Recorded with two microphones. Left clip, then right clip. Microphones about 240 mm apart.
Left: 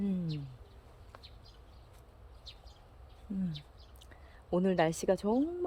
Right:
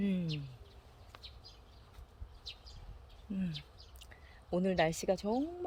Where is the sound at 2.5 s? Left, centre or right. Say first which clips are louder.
Right 4 dB; right.